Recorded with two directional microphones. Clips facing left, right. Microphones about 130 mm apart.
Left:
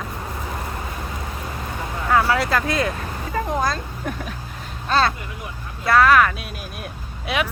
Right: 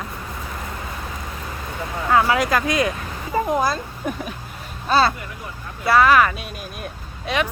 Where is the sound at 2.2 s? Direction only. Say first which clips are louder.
Right 1 dB; 15° right (ahead or behind).